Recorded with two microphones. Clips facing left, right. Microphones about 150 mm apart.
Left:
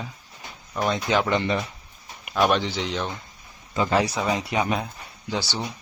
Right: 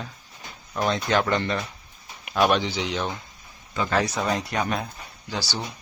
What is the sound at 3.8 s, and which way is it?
Speech, 20° left (ahead or behind).